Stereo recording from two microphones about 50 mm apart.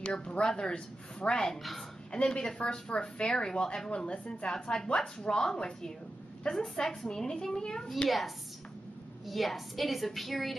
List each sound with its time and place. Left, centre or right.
0.1 s speech: left
9.3 s a woman's voice: centre